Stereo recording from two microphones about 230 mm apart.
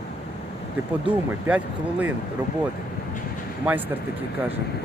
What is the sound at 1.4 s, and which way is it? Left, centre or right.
Speech, centre.